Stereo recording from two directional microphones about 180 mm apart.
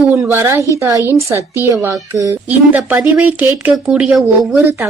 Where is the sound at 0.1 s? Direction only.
10° right (ahead or behind).